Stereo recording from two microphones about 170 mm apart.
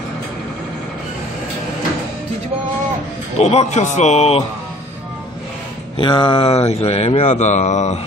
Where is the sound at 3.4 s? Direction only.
40° left (ahead or behind).